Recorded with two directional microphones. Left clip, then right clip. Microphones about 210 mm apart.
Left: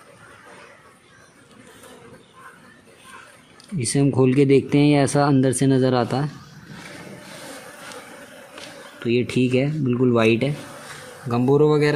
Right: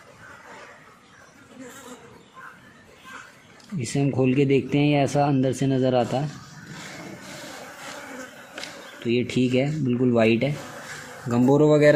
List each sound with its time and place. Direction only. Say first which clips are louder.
3.8 s speech: left 5 dB; 55° left (ahead or behind)
9.0 s speech: left 3 dB; 45° left (ahead or behind)